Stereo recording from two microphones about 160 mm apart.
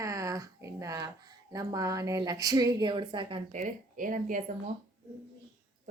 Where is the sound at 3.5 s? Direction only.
55° right (ahead or behind).